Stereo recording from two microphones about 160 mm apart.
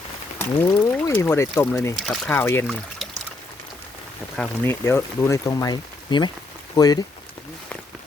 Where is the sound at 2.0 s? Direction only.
5° left (ahead or behind).